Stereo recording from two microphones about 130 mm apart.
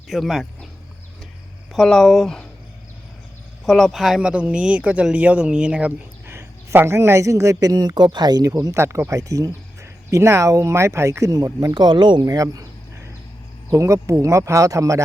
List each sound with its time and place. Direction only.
0.1 s speech: centre (ahead or behind)
1.7 s speech: 5° left (ahead or behind)
3.7 s speech: centre (ahead or behind)
6.2 s a man's voice: 20° right (ahead or behind); by 12.2 s 35° right (ahead or behind)
12.2 s a sound: 25° right (ahead or behind)
13.7 s a man's voice: 25° right (ahead or behind)